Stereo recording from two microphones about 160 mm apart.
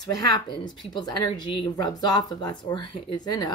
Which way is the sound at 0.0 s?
25° left (ahead or behind).